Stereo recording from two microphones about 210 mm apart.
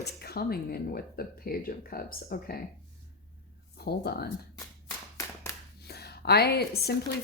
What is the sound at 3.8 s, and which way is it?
Speech, 50° left (ahead or behind).